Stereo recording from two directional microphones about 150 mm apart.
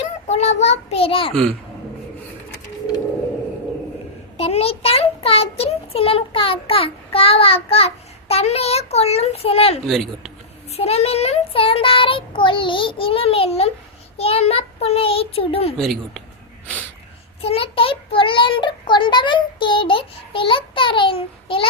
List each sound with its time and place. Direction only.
0.3 s a child's voice: 45° left (ahead or behind)
4.4 s a child's voice: 40° left (ahead or behind)
9.8 s speech: centre (ahead or behind)
10.7 s a child's voice: 45° left (ahead or behind)
15.8 s speech: centre (ahead or behind)
17.4 s a child's voice: 40° left (ahead or behind)